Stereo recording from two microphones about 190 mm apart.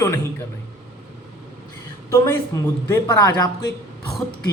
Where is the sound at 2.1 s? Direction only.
15° left (ahead or behind).